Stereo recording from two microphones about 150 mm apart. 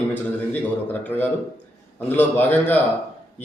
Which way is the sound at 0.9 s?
10° left (ahead or behind).